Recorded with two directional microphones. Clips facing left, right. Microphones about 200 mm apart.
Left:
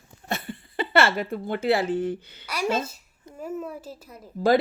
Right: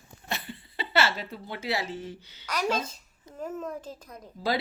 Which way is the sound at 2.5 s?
10° left (ahead or behind).